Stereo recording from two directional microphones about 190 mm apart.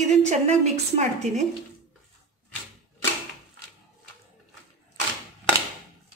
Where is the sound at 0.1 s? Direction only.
35° right (ahead or behind).